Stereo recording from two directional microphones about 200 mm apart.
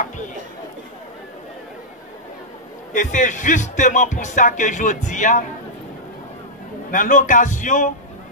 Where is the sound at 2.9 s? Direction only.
40° left (ahead or behind).